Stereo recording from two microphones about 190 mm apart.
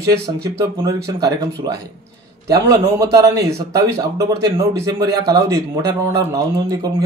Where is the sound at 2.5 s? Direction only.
20° right (ahead or behind).